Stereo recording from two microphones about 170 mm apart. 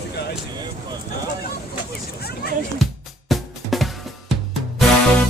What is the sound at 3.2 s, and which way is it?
Drum, centre (ahead or behind).